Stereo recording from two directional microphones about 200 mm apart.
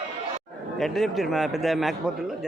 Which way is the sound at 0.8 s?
Centre (ahead or behind).